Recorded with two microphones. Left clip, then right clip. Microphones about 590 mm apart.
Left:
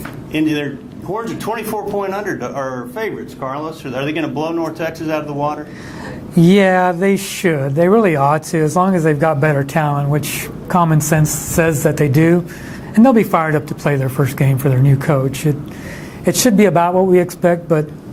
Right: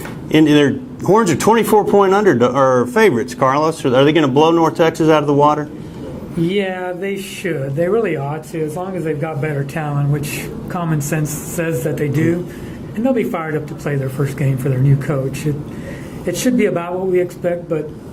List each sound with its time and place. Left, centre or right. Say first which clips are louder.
0.3 s speech: right 7 dB; right
6.6 s speech: left 8 dB; left
16.2 s speech: left 4 dB; left